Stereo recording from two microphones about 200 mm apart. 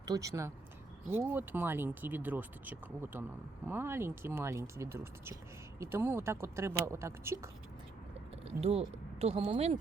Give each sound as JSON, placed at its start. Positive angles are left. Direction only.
{"t": 0.0, "sound": "speech", "side_deg": -15}
{"t": 8.4, "sound": "speech", "side_deg": -30}